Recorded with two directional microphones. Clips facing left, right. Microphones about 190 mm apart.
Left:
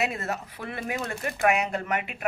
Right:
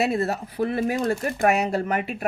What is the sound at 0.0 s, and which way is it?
A woman's voice, 35° right (ahead or behind).